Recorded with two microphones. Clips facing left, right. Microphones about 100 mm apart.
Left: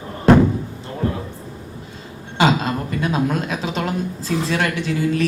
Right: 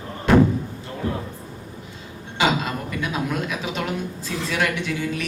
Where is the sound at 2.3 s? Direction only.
35° left (ahead or behind).